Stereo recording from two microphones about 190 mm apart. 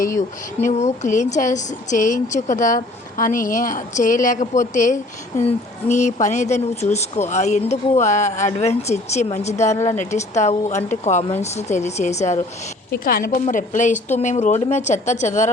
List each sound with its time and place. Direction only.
0.6 s a woman's voice: 35° left (ahead or behind)
13.1 s speech: 50° left (ahead or behind)